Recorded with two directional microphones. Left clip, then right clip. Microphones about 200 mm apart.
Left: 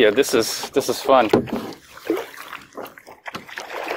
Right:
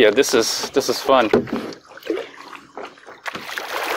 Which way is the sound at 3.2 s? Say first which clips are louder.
Right 5 dB; 50° right (ahead or behind).